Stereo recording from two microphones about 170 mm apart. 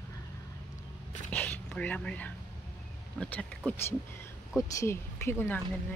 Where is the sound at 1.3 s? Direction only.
10° left (ahead or behind).